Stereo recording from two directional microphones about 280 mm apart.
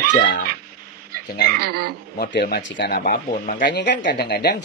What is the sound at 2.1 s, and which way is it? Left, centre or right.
Speech, left.